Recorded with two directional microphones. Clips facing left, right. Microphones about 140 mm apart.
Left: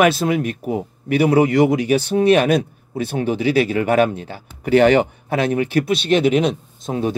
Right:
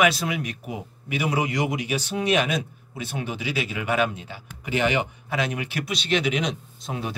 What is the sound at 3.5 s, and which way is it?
Speech, 50° left (ahead or behind).